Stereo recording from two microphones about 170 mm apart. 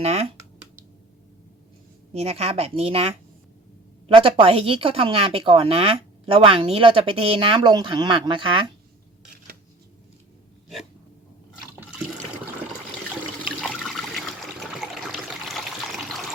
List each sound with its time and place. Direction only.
0.0 s speech: 40° right (ahead or behind)
2.1 s speech: 35° right (ahead or behind)
13.4 s water: centre (ahead or behind)